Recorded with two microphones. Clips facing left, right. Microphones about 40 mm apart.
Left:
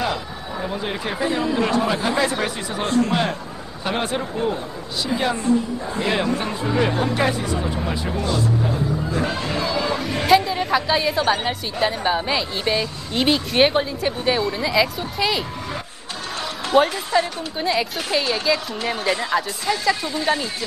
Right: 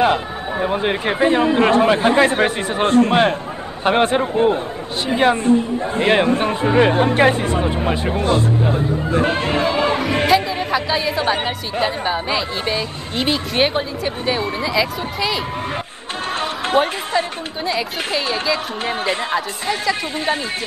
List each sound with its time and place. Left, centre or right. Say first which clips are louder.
0.0 s speech: right 8 dB; right
10.3 s chatter: left 1 dB; centre
10.7 s a woman's voice: even; centre
16.3 s music: even; right
17.6 s speech: left 1 dB; centre
18.2 s speech: right 1 dB; right